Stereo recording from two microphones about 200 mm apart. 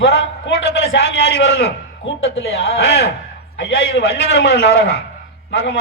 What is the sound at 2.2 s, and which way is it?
A man's voice, 70° left (ahead or behind).